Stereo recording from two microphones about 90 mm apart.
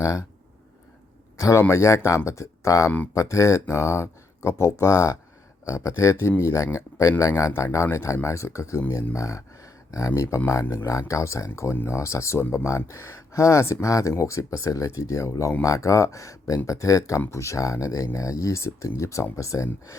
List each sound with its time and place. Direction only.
0.0 s speech: 35° left (ahead or behind)
1.4 s a man's voice: 35° left (ahead or behind)
9.1 s a sound: 35° left (ahead or behind)
10.2 s speech: 35° left (ahead or behind)